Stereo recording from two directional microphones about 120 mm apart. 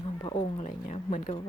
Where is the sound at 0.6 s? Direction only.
75° left (ahead or behind).